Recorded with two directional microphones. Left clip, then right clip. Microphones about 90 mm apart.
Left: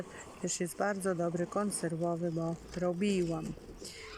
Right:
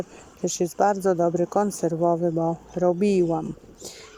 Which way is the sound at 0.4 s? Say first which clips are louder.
Right 12 dB; 30° right (ahead or behind).